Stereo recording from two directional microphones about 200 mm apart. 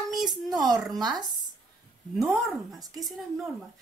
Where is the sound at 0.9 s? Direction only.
20° right (ahead or behind).